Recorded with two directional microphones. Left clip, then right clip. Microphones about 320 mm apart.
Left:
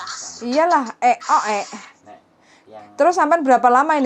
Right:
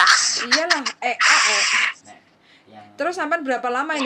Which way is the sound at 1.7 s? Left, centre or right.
Right.